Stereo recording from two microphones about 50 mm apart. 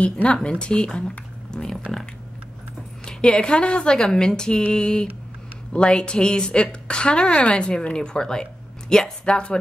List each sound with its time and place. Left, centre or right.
0.0 s a woman's voice: left
3.1 s a woman's voice: centre